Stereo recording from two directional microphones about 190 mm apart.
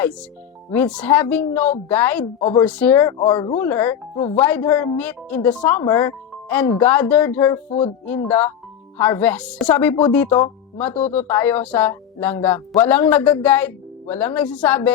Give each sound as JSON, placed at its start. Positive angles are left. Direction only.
{"t": 0.0, "sound": "a woman's voice", "side_deg": 5}
{"t": 3.5, "sound": "a woman's voice", "side_deg": 10}
{"t": 7.7, "sound": "speech", "side_deg": 30}
{"t": 8.0, "sound": "a woman's voice", "side_deg": 10}
{"t": 10.9, "sound": "speech", "side_deg": 35}
{"t": 11.3, "sound": "a woman's voice", "side_deg": 10}